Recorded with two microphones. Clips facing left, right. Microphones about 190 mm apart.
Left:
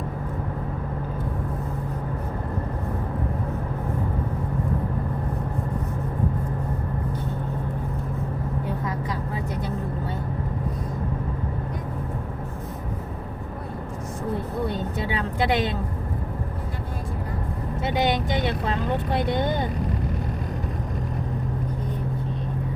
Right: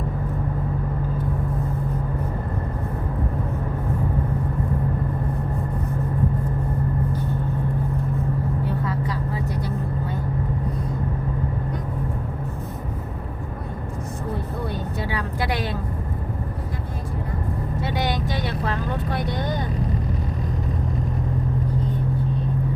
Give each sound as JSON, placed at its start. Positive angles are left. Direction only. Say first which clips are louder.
{"t": 8.6, "sound": "vehicle", "louder": "right 3 dB", "side_deg": 15}
{"t": 15.0, "sound": "a sound", "louder": "left 3 dB", "side_deg": 25}
{"t": 17.8, "sound": "vehicle", "louder": "left 4 dB", "side_deg": 20}